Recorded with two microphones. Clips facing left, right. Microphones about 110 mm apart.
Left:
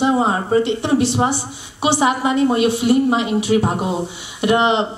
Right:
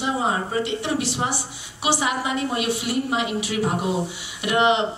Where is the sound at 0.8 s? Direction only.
25° left (ahead or behind).